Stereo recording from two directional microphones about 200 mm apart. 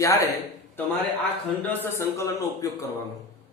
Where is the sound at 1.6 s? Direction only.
10° left (ahead or behind).